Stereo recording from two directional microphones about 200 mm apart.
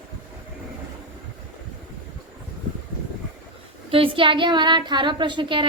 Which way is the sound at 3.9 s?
25° right (ahead or behind).